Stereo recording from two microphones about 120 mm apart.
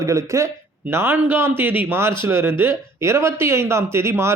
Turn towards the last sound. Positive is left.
turn(degrees=-20)  # may be behind; listen again after turning